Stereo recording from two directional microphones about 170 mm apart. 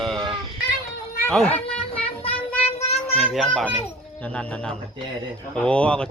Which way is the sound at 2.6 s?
40° left (ahead or behind).